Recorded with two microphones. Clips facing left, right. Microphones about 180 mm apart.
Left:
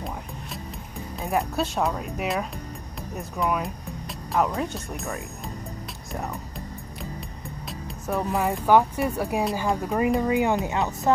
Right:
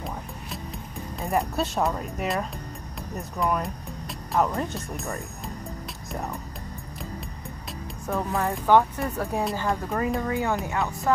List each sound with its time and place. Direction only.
1.2 s speech: centre (ahead or behind)
8.1 s speech: 15° left (ahead or behind)